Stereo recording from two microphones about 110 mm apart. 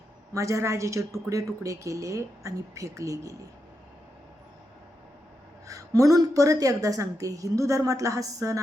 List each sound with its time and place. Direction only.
0.3 s a woman's voice: 25° right (ahead or behind)
5.6 s a woman's voice: 30° right (ahead or behind)